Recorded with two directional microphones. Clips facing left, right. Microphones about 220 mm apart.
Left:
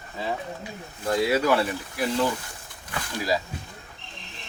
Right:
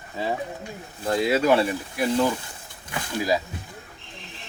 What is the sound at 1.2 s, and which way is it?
Speech, 25° right (ahead or behind).